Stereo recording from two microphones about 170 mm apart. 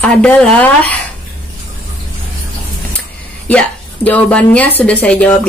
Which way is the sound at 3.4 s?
5° left (ahead or behind).